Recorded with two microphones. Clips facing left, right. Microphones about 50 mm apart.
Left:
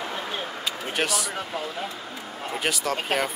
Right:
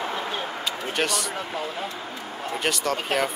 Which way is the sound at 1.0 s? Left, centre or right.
Centre.